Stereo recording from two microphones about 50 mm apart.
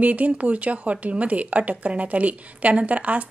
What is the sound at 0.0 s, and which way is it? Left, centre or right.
Speech, right.